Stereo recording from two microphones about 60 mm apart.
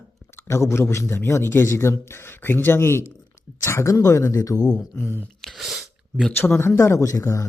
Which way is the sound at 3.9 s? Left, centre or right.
Left.